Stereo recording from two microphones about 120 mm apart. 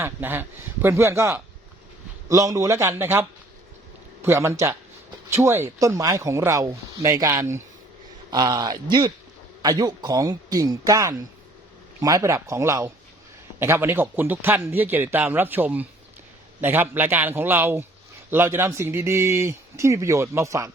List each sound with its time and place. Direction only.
0.0 s a man's voice: 20° right (ahead or behind)
8.3 s a man's voice: 35° right (ahead or behind)